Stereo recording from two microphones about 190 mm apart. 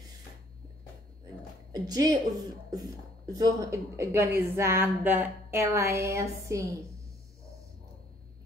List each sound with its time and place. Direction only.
1.7 s a woman's voice: 20° right (ahead or behind)